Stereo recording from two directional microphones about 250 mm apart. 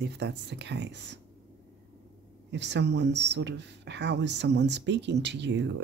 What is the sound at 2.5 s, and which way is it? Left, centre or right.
Speech, right.